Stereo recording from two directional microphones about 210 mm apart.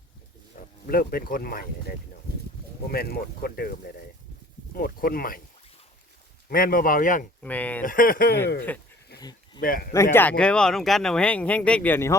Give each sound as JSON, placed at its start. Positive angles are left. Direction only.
{"t": 0.9, "sound": "speech", "side_deg": 45}
{"t": 2.8, "sound": "speech", "side_deg": 45}
{"t": 6.5, "sound": "speech", "side_deg": 45}
{"t": 7.4, "sound": "speech", "side_deg": 5}
{"t": 7.9, "sound": "speech", "side_deg": 40}
{"t": 9.6, "sound": "speech", "side_deg": 40}
{"t": 9.9, "sound": "speech", "side_deg": 10}